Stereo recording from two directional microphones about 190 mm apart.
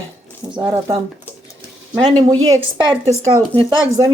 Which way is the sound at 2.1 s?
25° right (ahead or behind).